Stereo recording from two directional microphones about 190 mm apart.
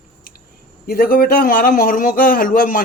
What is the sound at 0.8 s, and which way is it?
A man's voice, 50° left (ahead or behind).